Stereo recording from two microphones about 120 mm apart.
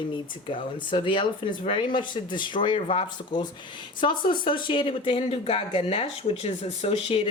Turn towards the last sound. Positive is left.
turn(degrees=55)  # may be behind; listen again after turning